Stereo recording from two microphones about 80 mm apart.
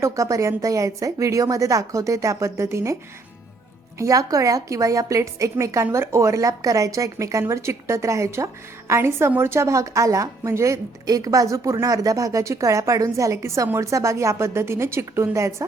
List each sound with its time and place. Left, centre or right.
0.0 s a woman's voice: right